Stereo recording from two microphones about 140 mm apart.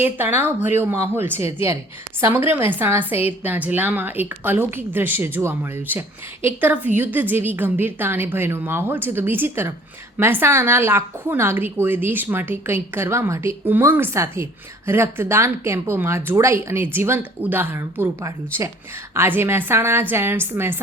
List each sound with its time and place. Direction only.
0.0 s a woman's voice: 15° right (ahead or behind)